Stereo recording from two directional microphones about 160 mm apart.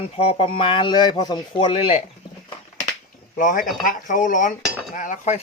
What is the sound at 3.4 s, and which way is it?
Cutlery, 55° left (ahead or behind).